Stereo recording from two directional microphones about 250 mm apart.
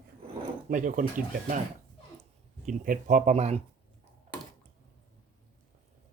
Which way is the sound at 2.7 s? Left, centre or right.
Right.